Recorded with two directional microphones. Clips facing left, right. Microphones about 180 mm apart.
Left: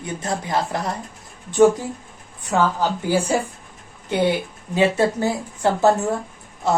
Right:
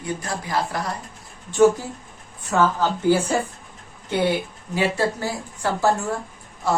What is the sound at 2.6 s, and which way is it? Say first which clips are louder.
Speech: right 2 dB; 15° left (ahead or behind).